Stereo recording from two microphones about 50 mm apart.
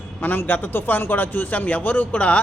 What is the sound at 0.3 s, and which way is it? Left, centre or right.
A man's voice, left.